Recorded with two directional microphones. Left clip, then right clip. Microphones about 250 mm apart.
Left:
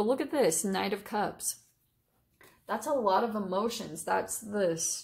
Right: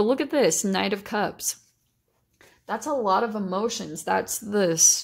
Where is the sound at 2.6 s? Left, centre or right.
Right.